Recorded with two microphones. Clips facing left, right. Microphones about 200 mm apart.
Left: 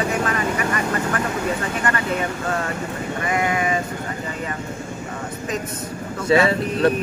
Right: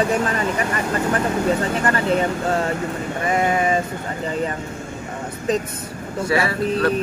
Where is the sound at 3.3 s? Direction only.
30° right (ahead or behind).